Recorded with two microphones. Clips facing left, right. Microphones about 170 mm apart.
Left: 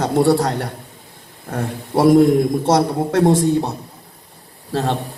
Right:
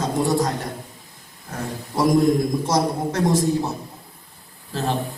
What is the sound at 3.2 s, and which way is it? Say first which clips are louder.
Speech: left 6 dB; 30° left (ahead or behind).